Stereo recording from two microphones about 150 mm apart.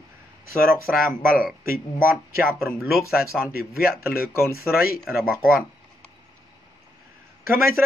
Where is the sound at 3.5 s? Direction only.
80° left.